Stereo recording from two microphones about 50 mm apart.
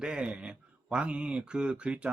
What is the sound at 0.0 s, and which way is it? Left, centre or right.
Speech, centre.